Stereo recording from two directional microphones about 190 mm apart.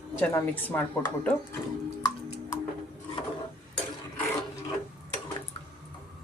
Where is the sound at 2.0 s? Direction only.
20° left (ahead or behind).